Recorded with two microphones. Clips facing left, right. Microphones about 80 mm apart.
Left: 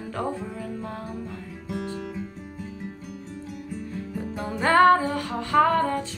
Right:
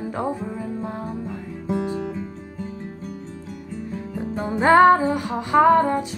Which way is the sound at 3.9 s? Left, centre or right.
Right.